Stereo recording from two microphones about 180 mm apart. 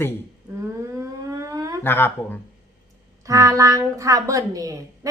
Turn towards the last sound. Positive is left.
turn(degrees=-20)  # may be behind; listen again after turning